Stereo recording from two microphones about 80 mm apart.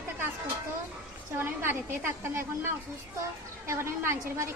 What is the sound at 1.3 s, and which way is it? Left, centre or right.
A woman's voice, right.